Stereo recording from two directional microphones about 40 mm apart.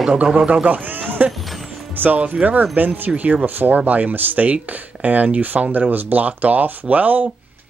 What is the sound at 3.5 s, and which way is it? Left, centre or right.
Speech, right.